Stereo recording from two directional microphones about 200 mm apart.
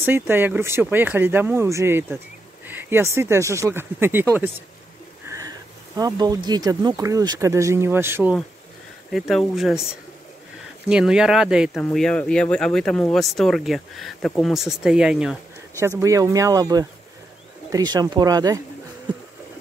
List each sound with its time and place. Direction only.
0.0 s speech: 10° right (ahead or behind)
10.9 s speech: 5° right (ahead or behind)
16.0 s speech: 15° right (ahead or behind)